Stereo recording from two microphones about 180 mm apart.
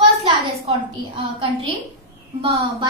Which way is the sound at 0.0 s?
35° right (ahead or behind).